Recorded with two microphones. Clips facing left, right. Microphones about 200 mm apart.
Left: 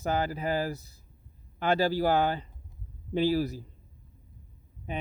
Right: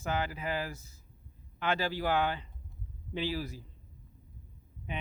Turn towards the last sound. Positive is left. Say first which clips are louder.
# left 4 dB
turn(degrees=40)  # may be behind; listen again after turning